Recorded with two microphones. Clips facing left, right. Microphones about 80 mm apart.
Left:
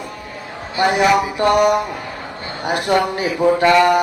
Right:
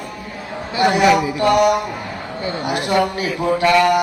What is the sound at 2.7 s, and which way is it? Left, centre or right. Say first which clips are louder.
Speech: left 4 dB; left.